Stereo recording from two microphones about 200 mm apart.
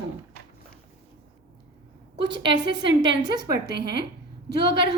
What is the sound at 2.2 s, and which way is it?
Speech, 20° right (ahead or behind).